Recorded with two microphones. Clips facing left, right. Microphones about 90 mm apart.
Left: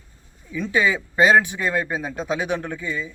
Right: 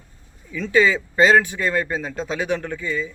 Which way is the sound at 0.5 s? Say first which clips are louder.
Right 3 dB; 15° left (ahead or behind).